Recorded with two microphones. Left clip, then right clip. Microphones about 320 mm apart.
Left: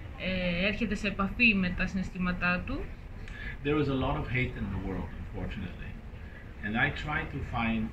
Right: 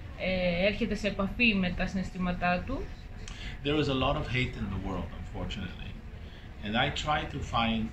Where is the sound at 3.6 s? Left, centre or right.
Centre.